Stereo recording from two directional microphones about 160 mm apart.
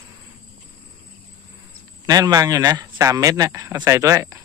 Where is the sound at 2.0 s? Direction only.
25° right (ahead or behind).